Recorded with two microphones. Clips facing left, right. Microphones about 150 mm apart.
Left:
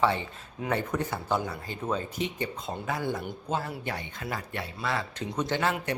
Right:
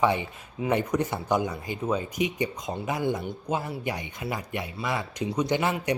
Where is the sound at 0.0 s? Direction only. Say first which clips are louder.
Right 2 dB; 15° right (ahead or behind).